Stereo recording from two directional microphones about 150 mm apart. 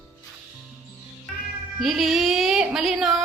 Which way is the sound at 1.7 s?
Centre (ahead or behind).